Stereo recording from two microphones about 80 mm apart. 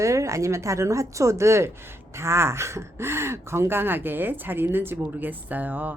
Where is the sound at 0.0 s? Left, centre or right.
Right.